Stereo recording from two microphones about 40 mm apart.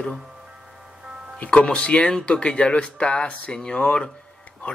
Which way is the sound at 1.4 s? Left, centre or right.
Left.